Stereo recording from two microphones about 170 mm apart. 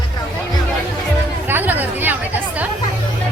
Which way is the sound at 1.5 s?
10° right (ahead or behind).